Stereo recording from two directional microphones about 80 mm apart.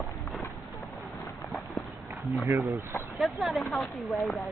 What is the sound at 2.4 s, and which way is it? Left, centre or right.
Speech, right.